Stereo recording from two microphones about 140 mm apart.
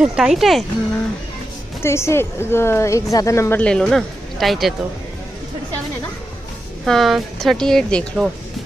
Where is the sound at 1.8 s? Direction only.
20° left (ahead or behind).